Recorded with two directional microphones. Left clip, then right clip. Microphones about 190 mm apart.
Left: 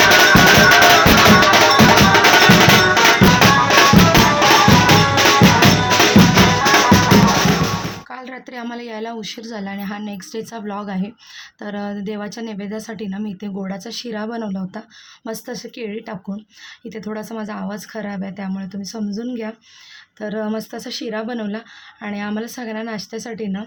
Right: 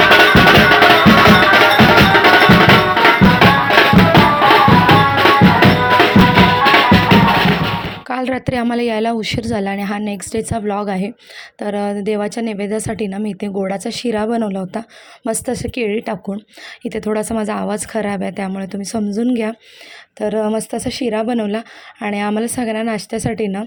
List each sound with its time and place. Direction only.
0.9 s percussion: 40° right (ahead or behind)
11.6 s speech: 35° right (ahead or behind)
20.1 s speech: 35° right (ahead or behind)